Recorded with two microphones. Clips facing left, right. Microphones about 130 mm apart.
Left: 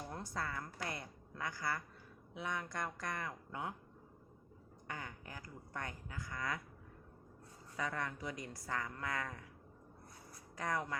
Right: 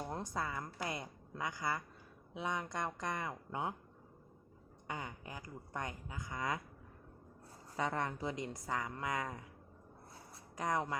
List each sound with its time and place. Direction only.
0.1 s a woman's voice: 20° right (ahead or behind)
4.9 s speech: 20° right (ahead or behind)
7.8 s speech: 25° right (ahead or behind)
10.6 s speech: 20° right (ahead or behind)